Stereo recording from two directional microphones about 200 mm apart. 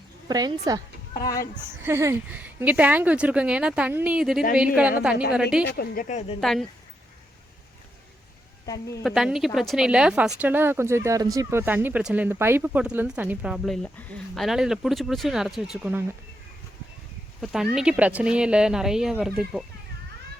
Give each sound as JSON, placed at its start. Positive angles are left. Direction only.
{"t": 0.3, "sound": "speech", "side_deg": -20}
{"t": 1.1, "sound": "speech", "side_deg": 20}
{"t": 1.8, "sound": "speech", "side_deg": -10}
{"t": 5.6, "sound": "speech", "side_deg": 50}
{"t": 6.4, "sound": "speech", "side_deg": 0}
{"t": 8.6, "sound": "a woman's voice", "side_deg": 20}
{"t": 9.0, "sound": "speech", "side_deg": 0}
{"t": 17.4, "sound": "speech", "side_deg": 0}